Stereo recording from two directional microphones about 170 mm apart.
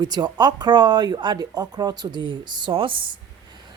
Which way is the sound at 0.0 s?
25° right (ahead or behind).